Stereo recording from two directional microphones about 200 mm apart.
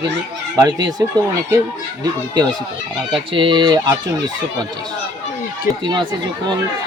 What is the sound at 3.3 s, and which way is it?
Speech, 25° right (ahead or behind).